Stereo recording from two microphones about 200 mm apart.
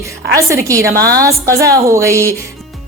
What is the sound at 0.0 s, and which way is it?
A woman's voice, 15° right (ahead or behind).